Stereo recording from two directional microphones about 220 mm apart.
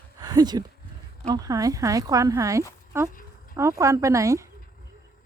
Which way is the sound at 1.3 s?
15° right (ahead or behind).